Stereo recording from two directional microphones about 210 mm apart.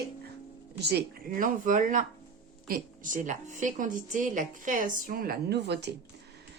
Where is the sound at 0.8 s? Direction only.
50° right (ahead or behind).